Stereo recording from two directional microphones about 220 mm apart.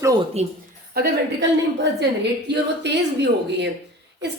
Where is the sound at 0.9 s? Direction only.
50° right (ahead or behind).